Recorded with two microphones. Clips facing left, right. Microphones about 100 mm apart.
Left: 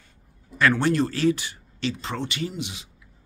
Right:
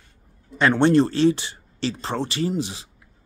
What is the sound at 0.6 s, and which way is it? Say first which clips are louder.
Speech: right 4 dB; 25° right (ahead or behind).